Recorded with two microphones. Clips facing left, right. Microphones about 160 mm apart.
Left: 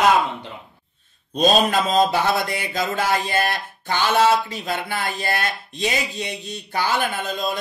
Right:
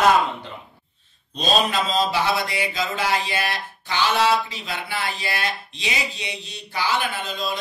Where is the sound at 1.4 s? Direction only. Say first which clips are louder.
Left 4 dB; 50° left (ahead or behind).